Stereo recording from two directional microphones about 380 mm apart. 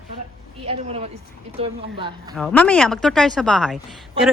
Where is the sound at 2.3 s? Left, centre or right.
Centre.